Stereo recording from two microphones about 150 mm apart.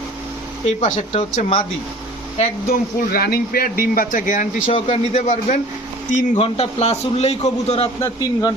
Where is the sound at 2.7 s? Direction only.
90° left; by 4.5 s 60° left (ahead or behind).